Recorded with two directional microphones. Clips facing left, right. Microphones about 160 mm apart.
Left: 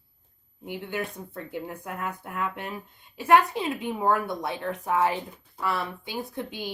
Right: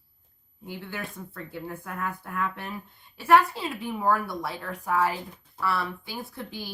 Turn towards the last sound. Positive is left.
turn(degrees=20)  # may be behind; listen again after turning